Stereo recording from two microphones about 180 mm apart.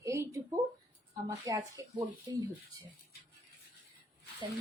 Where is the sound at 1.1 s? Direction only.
20° right (ahead or behind).